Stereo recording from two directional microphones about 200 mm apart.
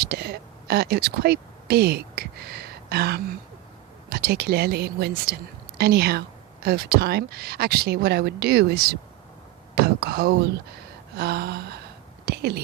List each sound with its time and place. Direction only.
0.1 s speech: 50° right (ahead or behind)
12.2 s whispering: 50° right (ahead or behind)